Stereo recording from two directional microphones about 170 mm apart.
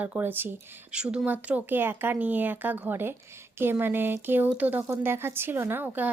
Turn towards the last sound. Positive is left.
turn(degrees=-10)  # may be behind; listen again after turning